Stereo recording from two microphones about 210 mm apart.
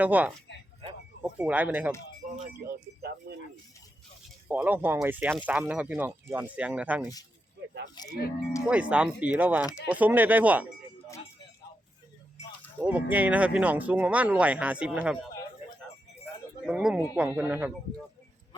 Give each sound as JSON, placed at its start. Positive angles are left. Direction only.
{"t": 0.0, "sound": "speech", "side_deg": -5}
{"t": 2.2, "sound": "music", "side_deg": -35}
{"t": 4.4, "sound": "speech", "side_deg": -10}
{"t": 8.0, "sound": "speech", "side_deg": 20}
{"t": 8.6, "sound": "speech", "side_deg": -5}
{"t": 12.8, "sound": "speech", "side_deg": -5}
{"t": 16.6, "sound": "speech", "side_deg": -5}